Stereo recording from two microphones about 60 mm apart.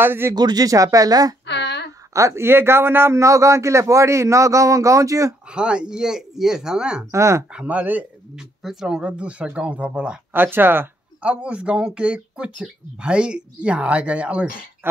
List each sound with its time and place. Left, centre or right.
0.0 s speech: right
0.3 s speech: right
2.1 s speech: right
2.4 s speech: right
3.2 s speech: right
5.5 s speech: centre
7.1 s speech: right
7.5 s speech: right
8.4 s speech: centre
10.3 s speech: right
11.2 s speech: right